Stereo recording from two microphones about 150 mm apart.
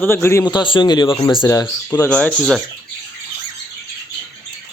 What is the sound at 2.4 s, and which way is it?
Speech, 5° right (ahead or behind).